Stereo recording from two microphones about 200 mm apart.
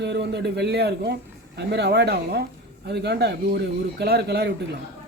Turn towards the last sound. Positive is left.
turn(degrees=-55)  # may be behind; listen again after turning